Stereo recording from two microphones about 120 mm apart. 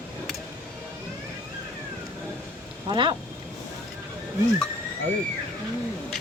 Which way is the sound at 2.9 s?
40° right (ahead or behind).